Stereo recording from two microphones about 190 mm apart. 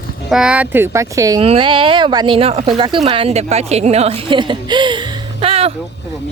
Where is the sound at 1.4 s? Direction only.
30° right (ahead or behind).